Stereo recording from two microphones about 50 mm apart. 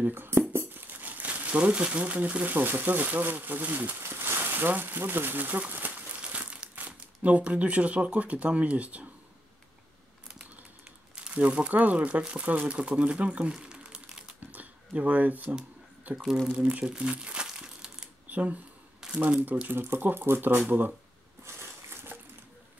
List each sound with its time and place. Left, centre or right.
0.1 s a sound: right
0.8 s speech: right
3.9 s speech: right
6.2 s speech: right
11.1 s speech: right
15.0 s speech: right
16.9 s speech: right
17.5 s crushing: centre
18.3 s speech: right
18.9 s crumpling: centre
19.4 s speech: right
19.7 s speech: right